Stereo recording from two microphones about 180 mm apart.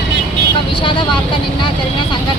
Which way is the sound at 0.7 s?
30° left (ahead or behind).